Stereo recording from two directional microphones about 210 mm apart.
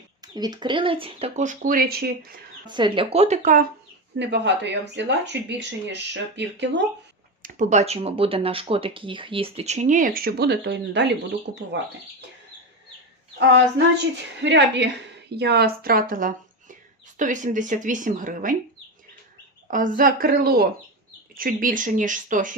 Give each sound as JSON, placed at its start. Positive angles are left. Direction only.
{"t": 0.2, "sound": "speech", "side_deg": -20}
{"t": 2.6, "sound": "speech", "side_deg": -20}
{"t": 4.2, "sound": "speech", "side_deg": -55}
{"t": 7.4, "sound": "speech", "side_deg": -35}
{"t": 14.3, "sound": "speech", "side_deg": -55}
{"t": 19.7, "sound": "a woman's voice", "side_deg": -40}